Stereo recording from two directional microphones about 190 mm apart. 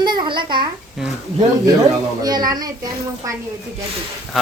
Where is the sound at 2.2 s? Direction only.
20° right (ahead or behind).